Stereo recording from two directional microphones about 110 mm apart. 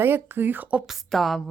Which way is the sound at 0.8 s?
Centre (ahead or behind).